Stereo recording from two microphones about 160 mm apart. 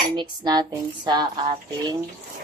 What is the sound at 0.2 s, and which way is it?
Speech, 25° right (ahead or behind).